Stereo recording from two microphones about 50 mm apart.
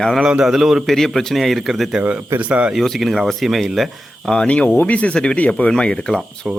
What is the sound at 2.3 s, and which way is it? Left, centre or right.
Speech, right.